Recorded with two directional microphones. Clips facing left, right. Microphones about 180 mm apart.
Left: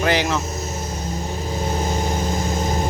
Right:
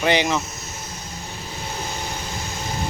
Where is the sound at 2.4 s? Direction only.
45° left (ahead or behind).